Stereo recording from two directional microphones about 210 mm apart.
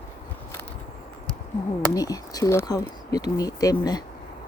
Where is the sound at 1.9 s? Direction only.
15° left (ahead or behind).